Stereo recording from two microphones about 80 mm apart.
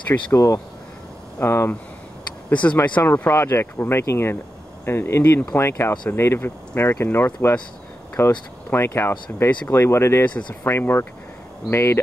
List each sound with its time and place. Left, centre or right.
0.3 s speech: left
1.4 s speech: left
2.5 s speech: centre
3.0 s speech: left
5.6 s speech: left